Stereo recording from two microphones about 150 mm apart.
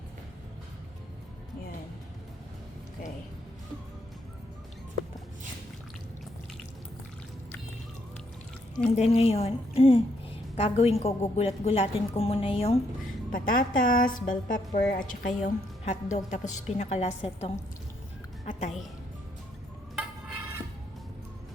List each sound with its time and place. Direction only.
9.0 s a woman's voice: 45° left (ahead or behind)
13.3 s a woman's voice: 65° left (ahead or behind)
15.8 s a woman's voice: 50° left (ahead or behind)